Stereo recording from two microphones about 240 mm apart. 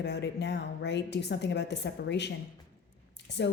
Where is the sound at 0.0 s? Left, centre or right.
Left.